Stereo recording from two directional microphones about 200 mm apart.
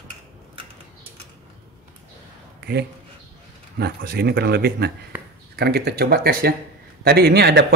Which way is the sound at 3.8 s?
50° right (ahead or behind).